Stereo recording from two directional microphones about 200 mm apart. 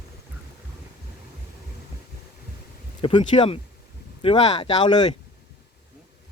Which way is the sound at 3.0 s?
25° left (ahead or behind).